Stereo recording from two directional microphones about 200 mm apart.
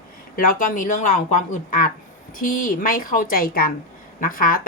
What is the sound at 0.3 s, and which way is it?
Speech, 40° left (ahead or behind).